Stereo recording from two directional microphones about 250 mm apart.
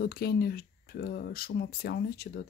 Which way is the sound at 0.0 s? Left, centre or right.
Left.